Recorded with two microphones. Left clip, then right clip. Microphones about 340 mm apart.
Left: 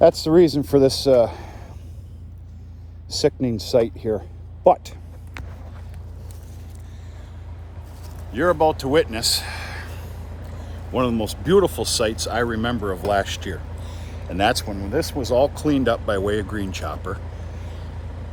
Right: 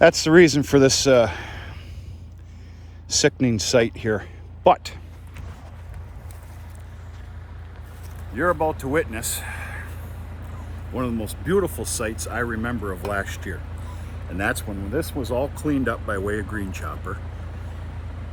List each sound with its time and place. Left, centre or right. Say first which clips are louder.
0.0 s a man's voice: right 1 dB; right
3.1 s speech: right 1 dB; right
8.4 s speech: left 4 dB; centre
9.1 s a sound: left 8 dB; centre
10.0 s vehicle: left 2 dB; left
10.9 s speech: left 6 dB; centre
17.2 s vehicle: left 2 dB; left